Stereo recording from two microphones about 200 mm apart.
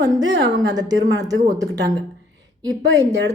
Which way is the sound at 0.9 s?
65° right (ahead or behind).